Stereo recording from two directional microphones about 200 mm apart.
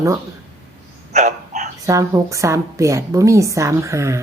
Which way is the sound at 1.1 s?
35° right (ahead or behind).